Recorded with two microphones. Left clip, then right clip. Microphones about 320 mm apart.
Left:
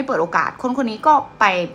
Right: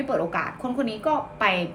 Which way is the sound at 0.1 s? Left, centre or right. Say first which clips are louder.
Left 8 dB; centre.